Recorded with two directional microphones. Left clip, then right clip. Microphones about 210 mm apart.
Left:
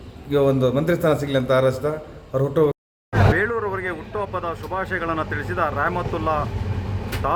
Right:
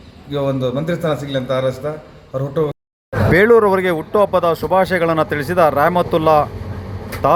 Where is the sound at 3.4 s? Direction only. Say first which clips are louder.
Right 12 dB; 30° right (ahead or behind).